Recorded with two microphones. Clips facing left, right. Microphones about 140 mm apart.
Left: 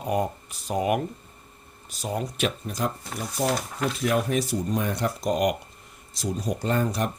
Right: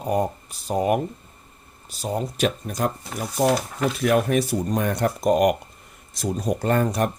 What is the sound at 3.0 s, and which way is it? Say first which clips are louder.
Speech: right 5 dB; centre (ahead or behind).